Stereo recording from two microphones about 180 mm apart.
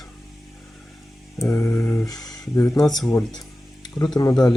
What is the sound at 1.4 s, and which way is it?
Speech, 15° left (ahead or behind).